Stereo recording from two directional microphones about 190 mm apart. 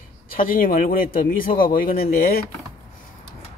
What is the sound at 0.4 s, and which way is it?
A man's voice, 50° left (ahead or behind).